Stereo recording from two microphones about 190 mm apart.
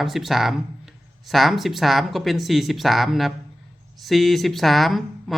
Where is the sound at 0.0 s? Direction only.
Centre (ahead or behind).